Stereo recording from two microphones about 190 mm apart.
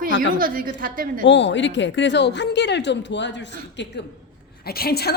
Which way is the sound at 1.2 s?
70° left (ahead or behind).